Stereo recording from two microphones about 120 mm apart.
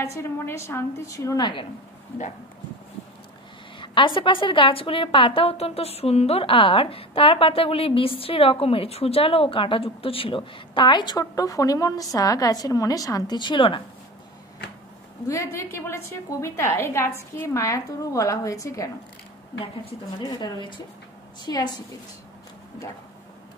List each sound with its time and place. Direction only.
0.0 s a woman's voice: 20° left (ahead or behind)
3.8 s a woman's voice: 45° left (ahead or behind)
15.2 s a woman's voice: 25° left (ahead or behind)
19.6 s a woman's voice: 50° left (ahead or behind)
20.2 s speech: 35° left (ahead or behind)